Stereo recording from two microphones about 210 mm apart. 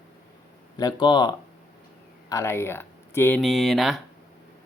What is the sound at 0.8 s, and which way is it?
A man's voice, 20° left (ahead or behind).